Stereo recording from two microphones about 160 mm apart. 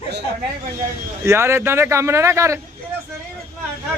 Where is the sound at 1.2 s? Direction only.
15° right (ahead or behind).